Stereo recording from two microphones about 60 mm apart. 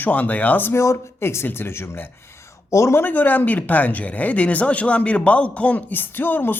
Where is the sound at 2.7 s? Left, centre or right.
Left.